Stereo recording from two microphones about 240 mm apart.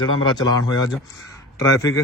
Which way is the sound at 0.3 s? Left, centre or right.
Centre.